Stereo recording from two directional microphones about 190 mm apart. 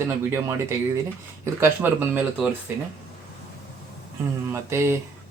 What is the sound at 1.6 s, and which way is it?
Speech, 10° right (ahead or behind).